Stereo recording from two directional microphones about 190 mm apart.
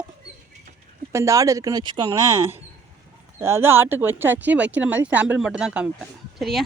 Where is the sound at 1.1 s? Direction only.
15° right (ahead or behind).